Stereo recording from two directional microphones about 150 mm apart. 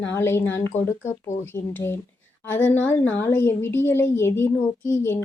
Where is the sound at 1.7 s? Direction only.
15° left (ahead or behind).